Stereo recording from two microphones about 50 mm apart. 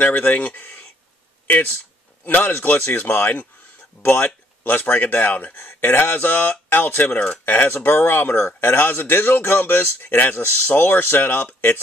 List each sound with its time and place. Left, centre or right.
0.0 s speech: left